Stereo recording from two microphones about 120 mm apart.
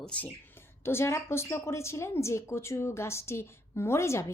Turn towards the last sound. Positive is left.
turn(degrees=25)  # may be behind; listen again after turning